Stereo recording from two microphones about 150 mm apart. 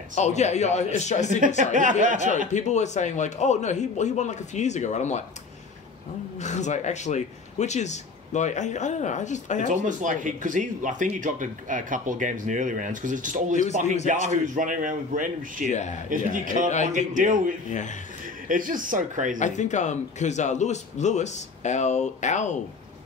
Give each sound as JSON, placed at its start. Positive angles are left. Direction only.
{"t": 0.1, "sound": "speech", "side_deg": 50}
{"t": 1.6, "sound": "speech", "side_deg": -60}
{"t": 2.5, "sound": "speech", "side_deg": 50}
{"t": 6.3, "sound": "speech", "side_deg": 50}
{"t": 9.7, "sound": "speech", "side_deg": -55}
{"t": 16.7, "sound": "speech", "side_deg": 50}
{"t": 17.1, "sound": "speech", "side_deg": -60}
{"t": 17.6, "sound": "a man's voice", "side_deg": 55}
{"t": 18.5, "sound": "speech", "side_deg": -65}
{"t": 19.3, "sound": "speech", "side_deg": 55}